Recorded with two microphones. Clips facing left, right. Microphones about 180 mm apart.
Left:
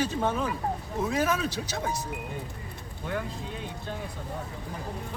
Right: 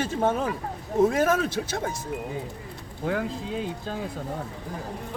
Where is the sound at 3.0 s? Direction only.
90° right.